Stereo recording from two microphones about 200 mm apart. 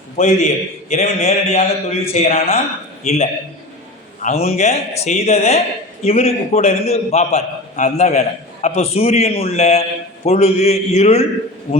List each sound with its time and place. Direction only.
0.2 s a man's voice: 35° left (ahead or behind)